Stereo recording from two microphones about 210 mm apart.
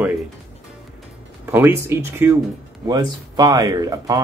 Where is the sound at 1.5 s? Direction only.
10° right (ahead or behind).